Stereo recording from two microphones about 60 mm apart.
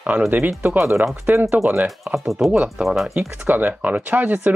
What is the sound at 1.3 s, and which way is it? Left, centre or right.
Speech, right.